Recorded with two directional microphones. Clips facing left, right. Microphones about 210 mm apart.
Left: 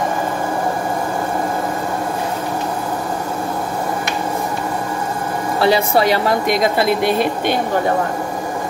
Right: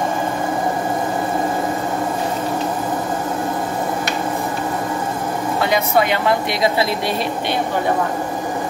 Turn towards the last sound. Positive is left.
turn(degrees=50)  # may be behind; listen again after turning